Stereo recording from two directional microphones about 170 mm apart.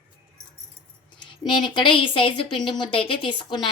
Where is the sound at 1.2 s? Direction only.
30° left (ahead or behind).